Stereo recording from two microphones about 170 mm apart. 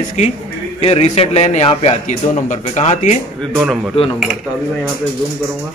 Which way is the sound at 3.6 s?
5° right (ahead or behind).